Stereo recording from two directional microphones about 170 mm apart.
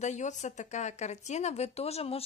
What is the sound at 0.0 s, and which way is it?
Speech, 45° left (ahead or behind).